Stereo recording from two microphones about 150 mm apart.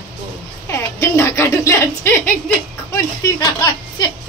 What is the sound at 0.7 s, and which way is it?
Speech, 20° left (ahead or behind).